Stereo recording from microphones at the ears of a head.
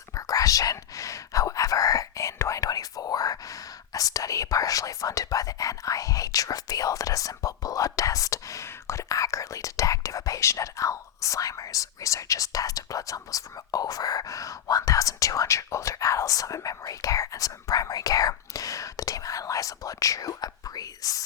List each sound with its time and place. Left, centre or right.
0.1 s speech: left